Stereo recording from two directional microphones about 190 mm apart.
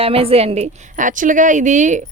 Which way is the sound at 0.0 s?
30° right (ahead or behind).